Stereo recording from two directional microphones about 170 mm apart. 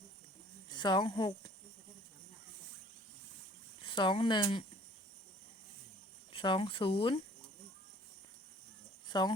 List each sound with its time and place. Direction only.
0.7 s speech: 25° left (ahead or behind)
3.8 s speech: 30° left (ahead or behind)
6.3 s speech: 30° left (ahead or behind)
9.0 s cricket: 25° left (ahead or behind)